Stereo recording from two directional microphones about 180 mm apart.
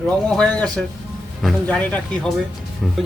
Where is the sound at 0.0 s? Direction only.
5° left (ahead or behind).